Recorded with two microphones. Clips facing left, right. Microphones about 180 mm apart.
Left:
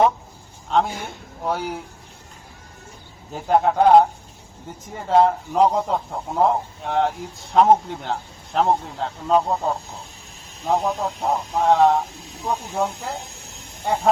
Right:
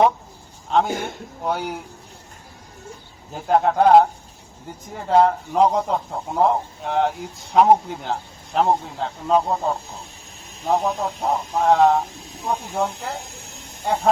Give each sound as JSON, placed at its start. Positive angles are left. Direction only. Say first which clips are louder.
{"t": 0.7, "sound": "speech", "louder": "right 1 dB", "side_deg": 0}
{"t": 3.3, "sound": "speech", "louder": "even", "side_deg": 0}
{"t": 10.7, "sound": "speech", "louder": "even", "side_deg": 0}